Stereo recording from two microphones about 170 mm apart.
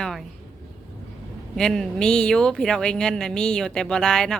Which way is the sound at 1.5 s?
5° left (ahead or behind).